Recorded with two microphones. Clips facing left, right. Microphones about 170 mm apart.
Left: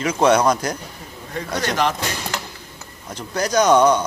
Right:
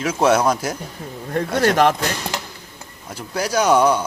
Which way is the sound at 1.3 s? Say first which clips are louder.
Right 6 dB; 50° right (ahead or behind).